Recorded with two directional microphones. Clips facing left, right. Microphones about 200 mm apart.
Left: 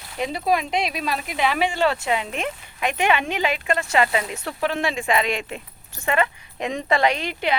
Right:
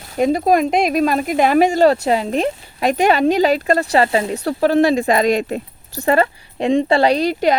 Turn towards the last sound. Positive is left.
turn(degrees=-40)  # may be behind; listen again after turning